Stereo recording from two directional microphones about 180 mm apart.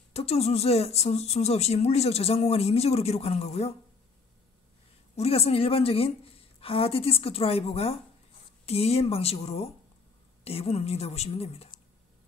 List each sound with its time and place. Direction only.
0.1 s speech: 35° left (ahead or behind)
5.1 s speech: 35° left (ahead or behind)